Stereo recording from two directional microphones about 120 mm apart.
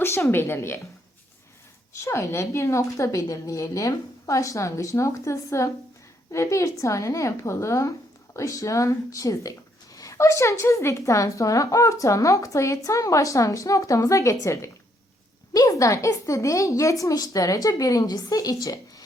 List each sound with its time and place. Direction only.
0.0 s a woman's voice: 20° left (ahead or behind)
2.0 s speech: 20° left (ahead or behind)